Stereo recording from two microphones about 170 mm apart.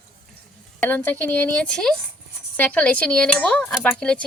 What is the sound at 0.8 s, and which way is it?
Speech, 10° left (ahead or behind).